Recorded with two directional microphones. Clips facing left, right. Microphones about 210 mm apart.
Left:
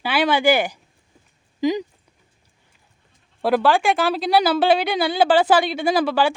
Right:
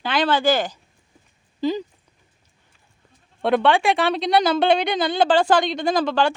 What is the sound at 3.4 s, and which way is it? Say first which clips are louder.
A woman's voice: even; 5° left (ahead or behind).